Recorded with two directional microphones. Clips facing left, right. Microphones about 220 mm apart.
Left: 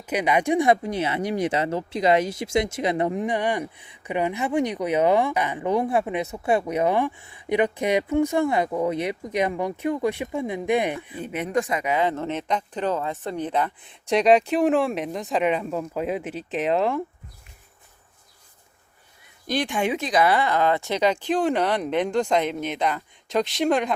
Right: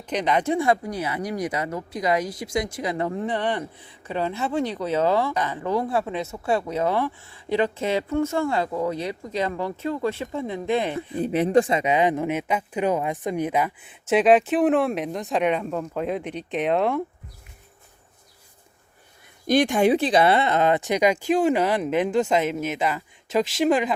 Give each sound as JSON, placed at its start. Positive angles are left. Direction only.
{"t": 0.0, "sound": "speech", "side_deg": 10}
{"t": 11.1, "sound": "speech", "side_deg": -35}
{"t": 19.5, "sound": "speech", "side_deg": -45}